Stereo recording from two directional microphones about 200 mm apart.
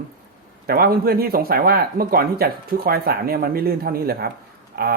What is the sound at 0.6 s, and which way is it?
Speech, 50° right (ahead or behind).